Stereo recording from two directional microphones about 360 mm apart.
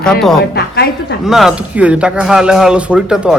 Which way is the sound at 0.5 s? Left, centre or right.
Left.